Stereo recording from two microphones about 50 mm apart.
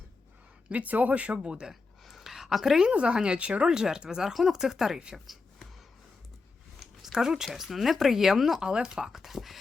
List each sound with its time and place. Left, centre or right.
0.7 s speech: right
1.4 s speech: centre
1.7 s a sound: centre
2.8 s speech: right
3.7 s speech: centre
5.1 s a sound: centre
7.0 s speech: centre
9.2 s speech: centre